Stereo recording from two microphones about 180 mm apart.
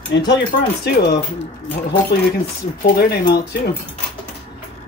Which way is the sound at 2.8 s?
55° left (ahead or behind).